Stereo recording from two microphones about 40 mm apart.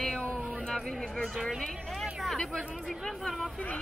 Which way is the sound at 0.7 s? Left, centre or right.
Centre.